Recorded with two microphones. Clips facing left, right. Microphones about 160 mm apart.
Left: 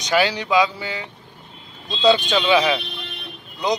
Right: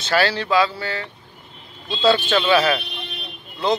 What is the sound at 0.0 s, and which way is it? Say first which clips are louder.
Speech: even; 15° left (ahead or behind).